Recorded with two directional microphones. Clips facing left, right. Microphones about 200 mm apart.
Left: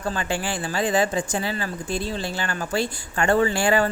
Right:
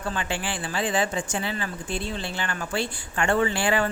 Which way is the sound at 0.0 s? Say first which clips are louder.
Left 3 dB; 40° left (ahead or behind).